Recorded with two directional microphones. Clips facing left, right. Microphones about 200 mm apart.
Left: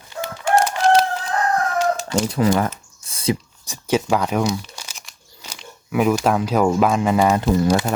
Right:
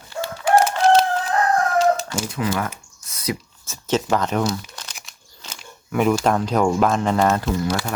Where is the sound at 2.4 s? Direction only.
40° left (ahead or behind).